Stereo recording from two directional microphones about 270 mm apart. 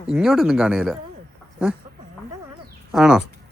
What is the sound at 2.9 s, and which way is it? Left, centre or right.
Speech, centre.